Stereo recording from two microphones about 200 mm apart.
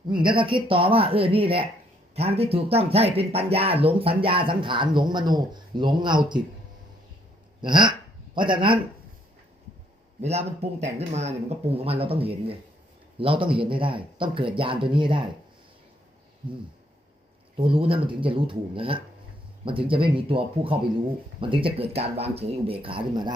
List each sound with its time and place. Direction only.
0.1 s speech: 25° right (ahead or behind)
7.6 s speech: 25° right (ahead or behind)
10.2 s speech: 30° right (ahead or behind)
17.6 s speech: 25° right (ahead or behind)